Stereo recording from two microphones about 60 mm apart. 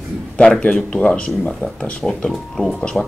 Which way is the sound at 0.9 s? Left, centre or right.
Centre.